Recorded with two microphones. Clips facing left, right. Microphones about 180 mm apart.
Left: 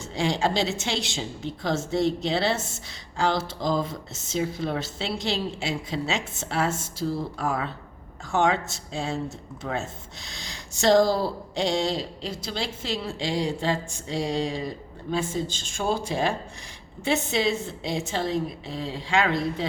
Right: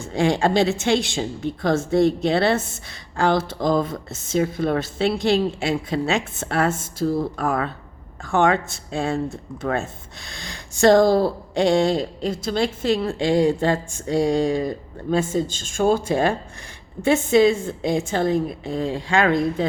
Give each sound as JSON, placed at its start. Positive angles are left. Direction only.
{"t": 0.0, "sound": "a woman's voice", "side_deg": -55}